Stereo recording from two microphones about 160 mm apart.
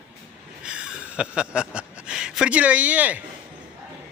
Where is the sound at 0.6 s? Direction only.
5° right (ahead or behind).